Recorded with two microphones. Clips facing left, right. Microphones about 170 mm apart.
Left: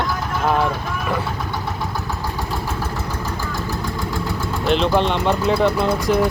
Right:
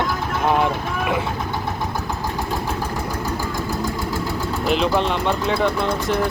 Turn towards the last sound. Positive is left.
turn(degrees=0)  # may be behind; listen again after turning